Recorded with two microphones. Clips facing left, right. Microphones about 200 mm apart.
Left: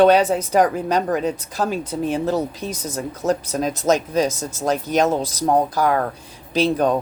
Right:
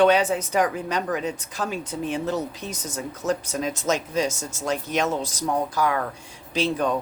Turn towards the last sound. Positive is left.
turn(degrees=40)  # may be behind; listen again after turning